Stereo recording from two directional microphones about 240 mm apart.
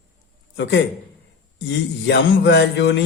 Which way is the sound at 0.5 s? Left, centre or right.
Left.